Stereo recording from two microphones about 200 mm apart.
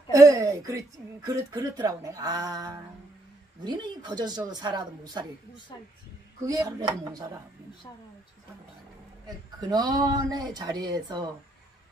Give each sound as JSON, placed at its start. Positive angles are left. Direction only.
{"t": 0.1, "sound": "speech", "side_deg": -15}
{"t": 6.4, "sound": "speech", "side_deg": -20}
{"t": 9.7, "sound": "speech", "side_deg": -20}